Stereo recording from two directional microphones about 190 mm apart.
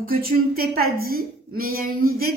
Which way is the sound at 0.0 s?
50° right (ahead or behind).